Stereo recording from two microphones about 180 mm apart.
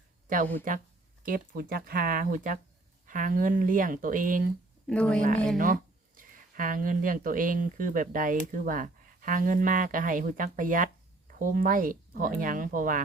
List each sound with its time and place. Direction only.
0.7 s speech: 50° right (ahead or behind)
4.9 s speech: 5° left (ahead or behind)
5.5 s speech: 50° right (ahead or behind)